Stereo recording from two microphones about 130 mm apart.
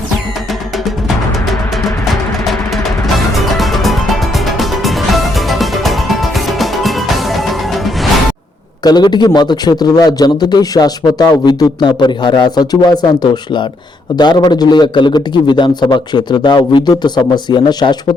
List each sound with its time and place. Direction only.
3.3 s music: centre (ahead or behind)
8.8 s a man's voice: 30° left (ahead or behind)